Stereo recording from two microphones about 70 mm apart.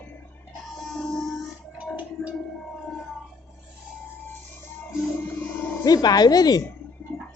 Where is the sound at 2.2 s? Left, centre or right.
Left.